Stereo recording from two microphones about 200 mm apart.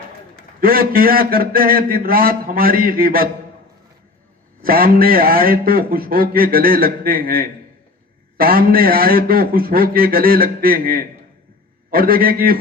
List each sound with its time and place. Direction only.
0.6 s a man's voice: 45° right (ahead or behind)
4.6 s a man's voice: 45° right (ahead or behind)